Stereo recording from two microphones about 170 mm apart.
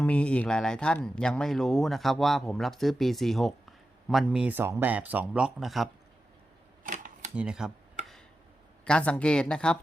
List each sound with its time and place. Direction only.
0.0 s speech: 5° left (ahead or behind)
7.3 s speech: 5° right (ahead or behind)
8.8 s speech: 5° left (ahead or behind)